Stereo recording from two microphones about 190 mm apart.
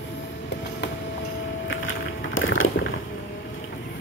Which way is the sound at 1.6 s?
90° left.